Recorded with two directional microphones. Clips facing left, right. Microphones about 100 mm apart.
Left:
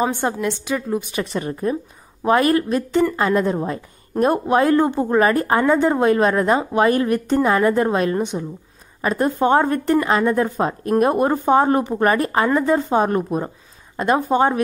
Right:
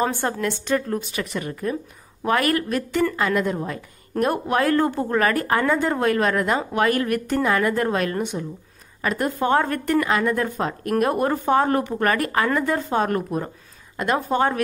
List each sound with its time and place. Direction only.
0.0 s a woman's voice: 15° left (ahead or behind)
1.1 s speech: 30° left (ahead or behind)